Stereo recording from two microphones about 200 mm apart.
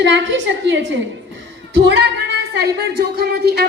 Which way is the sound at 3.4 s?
50° right (ahead or behind).